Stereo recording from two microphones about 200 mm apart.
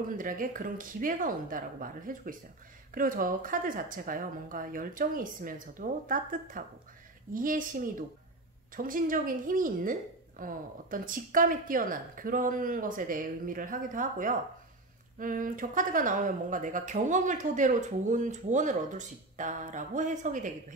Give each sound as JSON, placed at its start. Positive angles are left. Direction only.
{"t": 0.2, "sound": "a woman's voice", "side_deg": -45}